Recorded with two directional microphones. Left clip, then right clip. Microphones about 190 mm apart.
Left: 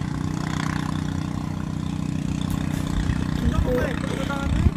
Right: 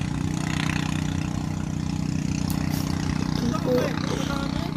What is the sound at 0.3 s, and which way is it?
Vehicle, 20° right (ahead or behind).